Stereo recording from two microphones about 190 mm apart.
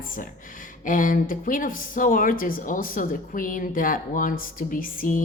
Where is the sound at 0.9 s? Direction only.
45° left (ahead or behind).